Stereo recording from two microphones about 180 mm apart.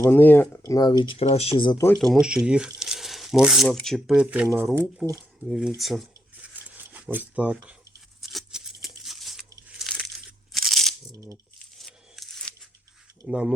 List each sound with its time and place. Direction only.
0.0 s speech: 10° left (ahead or behind); by 1.8 s 30° left (ahead or behind)
2.0 s speech: centre (ahead or behind); by 5.2 s 15° right (ahead or behind)
5.5 s speech: 5° right (ahead or behind)
6.7 s a sound: 10° right (ahead or behind)
8.2 s tearing: centre (ahead or behind)
10.5 s crunch: centre (ahead or behind)
11.1 s a sound: 15° right (ahead or behind)
11.8 s a sound: centre (ahead or behind)
13.2 s speech: 5° right (ahead or behind)